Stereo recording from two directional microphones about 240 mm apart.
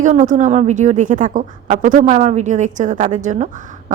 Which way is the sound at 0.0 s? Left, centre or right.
Right.